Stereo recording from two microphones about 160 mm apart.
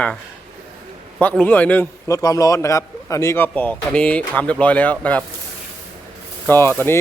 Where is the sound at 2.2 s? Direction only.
20° left (ahead or behind).